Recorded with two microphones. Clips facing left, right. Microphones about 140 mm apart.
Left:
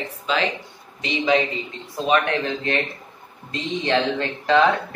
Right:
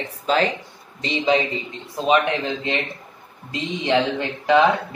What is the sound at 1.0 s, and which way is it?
A man's voice, 25° right (ahead or behind).